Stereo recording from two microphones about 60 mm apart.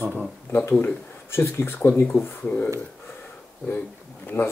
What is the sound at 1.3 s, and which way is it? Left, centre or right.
Speech, left.